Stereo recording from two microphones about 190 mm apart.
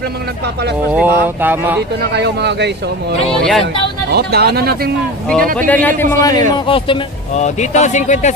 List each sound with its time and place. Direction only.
0.9 s speech: 10° right (ahead or behind)
2.1 s speech: 60° right (ahead or behind)
3.2 s speech: centre (ahead or behind)
4.1 s speech: 55° right (ahead or behind)
5.3 s a man's voice: 5° left (ahead or behind)
6.5 s speech: 25° left (ahead or behind)